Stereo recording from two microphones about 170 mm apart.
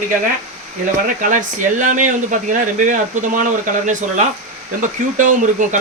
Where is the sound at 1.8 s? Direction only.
50° right (ahead or behind).